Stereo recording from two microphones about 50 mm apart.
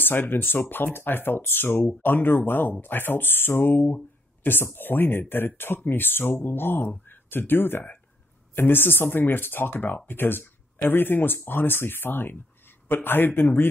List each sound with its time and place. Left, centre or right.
0.0 s speech: left